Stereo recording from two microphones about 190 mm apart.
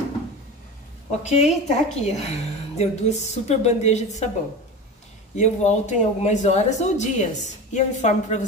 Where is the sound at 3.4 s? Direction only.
35° left (ahead or behind).